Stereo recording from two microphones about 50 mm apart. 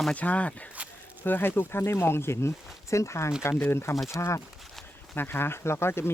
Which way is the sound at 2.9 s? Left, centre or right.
Left.